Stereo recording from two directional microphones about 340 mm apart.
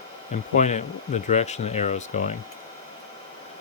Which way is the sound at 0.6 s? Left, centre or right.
Centre.